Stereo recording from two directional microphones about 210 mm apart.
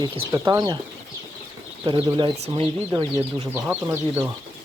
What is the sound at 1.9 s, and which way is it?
Speech, 25° right (ahead or behind).